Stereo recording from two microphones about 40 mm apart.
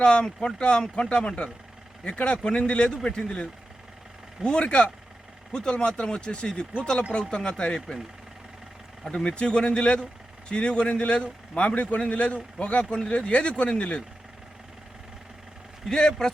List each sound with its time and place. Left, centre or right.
0.0 s a man's voice: left
9.0 s a man's voice: left
15.9 s speech: centre